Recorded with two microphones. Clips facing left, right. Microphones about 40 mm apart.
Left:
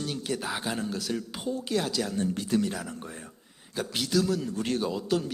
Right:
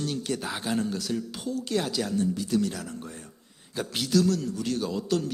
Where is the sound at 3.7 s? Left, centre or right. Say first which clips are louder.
Right 2 dB; centre.